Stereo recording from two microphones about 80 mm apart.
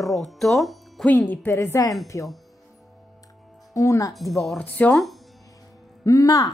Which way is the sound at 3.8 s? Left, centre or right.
Left.